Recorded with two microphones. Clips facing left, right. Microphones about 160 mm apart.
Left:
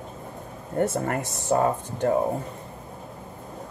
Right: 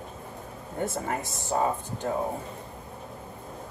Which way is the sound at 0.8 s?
60° left (ahead or behind).